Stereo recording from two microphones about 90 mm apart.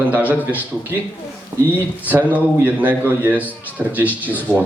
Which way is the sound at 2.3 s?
15° right (ahead or behind).